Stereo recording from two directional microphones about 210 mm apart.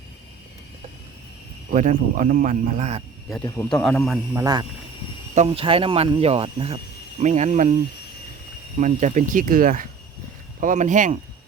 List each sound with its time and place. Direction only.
1.7 s speech: 35° right (ahead or behind)
3.4 s a man's voice: 10° left (ahead or behind)
4.4 s speech: 20° right (ahead or behind)
5.3 s speech: 30° right (ahead or behind)
8.8 s speech: 35° right (ahead or behind)